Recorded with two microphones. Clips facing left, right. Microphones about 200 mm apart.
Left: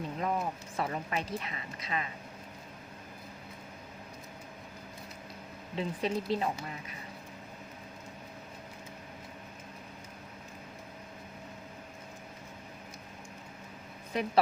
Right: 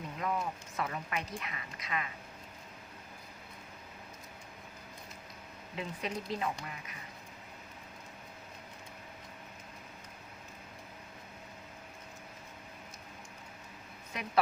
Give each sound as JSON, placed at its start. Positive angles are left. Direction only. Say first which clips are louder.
{"t": 0.2, "sound": "a woman's voice", "louder": "left 1 dB", "side_deg": 30}
{"t": 5.7, "sound": "a woman's voice", "louder": "left 6 dB", "side_deg": 30}
{"t": 14.1, "sound": "a woman's voice", "louder": "left 9 dB", "side_deg": 30}